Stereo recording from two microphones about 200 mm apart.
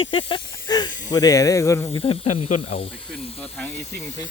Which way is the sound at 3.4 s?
10° left (ahead or behind).